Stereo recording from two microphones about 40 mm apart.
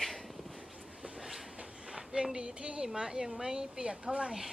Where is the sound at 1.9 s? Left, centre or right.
Centre.